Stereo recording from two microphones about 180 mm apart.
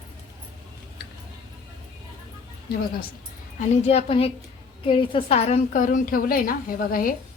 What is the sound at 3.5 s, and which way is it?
A woman's voice, 35° left (ahead or behind).